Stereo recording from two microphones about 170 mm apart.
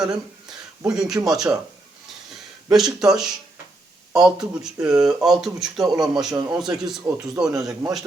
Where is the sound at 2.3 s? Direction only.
Centre (ahead or behind).